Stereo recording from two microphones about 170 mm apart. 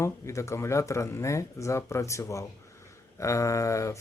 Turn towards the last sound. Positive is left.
turn(degrees=20)  # may be behind; listen again after turning